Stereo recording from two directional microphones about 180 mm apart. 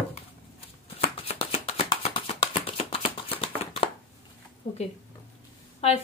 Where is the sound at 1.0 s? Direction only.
35° left (ahead or behind).